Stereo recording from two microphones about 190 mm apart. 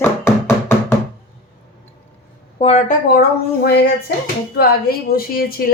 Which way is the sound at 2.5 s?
35° left (ahead or behind).